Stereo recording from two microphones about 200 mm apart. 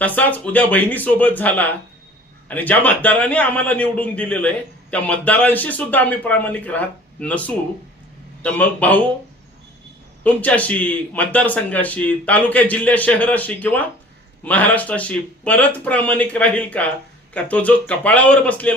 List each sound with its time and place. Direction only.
0.0 s a man's voice: 10° left (ahead or behind)
10.2 s a man's voice: 5° left (ahead or behind)